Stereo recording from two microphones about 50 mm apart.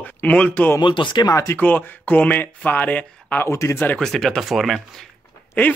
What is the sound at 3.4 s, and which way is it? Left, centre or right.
Speech, left.